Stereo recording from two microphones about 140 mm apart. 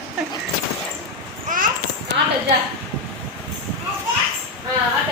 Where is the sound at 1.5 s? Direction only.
70° right (ahead or behind).